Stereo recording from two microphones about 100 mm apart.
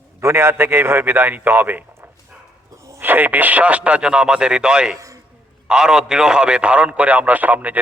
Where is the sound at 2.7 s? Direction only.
30° right (ahead or behind).